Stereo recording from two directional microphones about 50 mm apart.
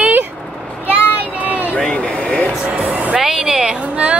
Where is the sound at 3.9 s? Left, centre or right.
Right.